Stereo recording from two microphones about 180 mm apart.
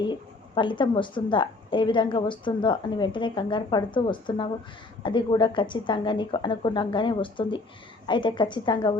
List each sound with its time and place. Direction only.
0.0 s a woman's voice: 25° left (ahead or behind)